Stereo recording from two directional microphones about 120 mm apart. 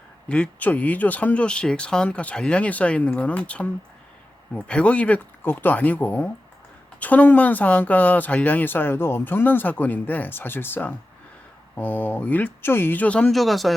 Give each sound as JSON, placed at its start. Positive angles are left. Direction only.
{"t": 0.3, "sound": "speech", "side_deg": 10}